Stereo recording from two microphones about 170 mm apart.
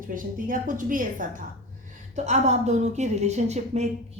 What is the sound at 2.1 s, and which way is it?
A woman's voice, 40° right (ahead or behind).